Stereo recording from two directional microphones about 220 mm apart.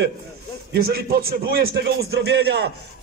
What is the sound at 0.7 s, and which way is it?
A man's voice, 45° right (ahead or behind).